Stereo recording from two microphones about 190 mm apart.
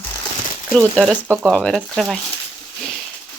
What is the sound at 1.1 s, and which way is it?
Speech, 5° right (ahead or behind).